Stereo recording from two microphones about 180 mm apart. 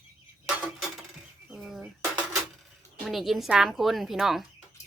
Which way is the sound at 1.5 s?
Centre (ahead or behind).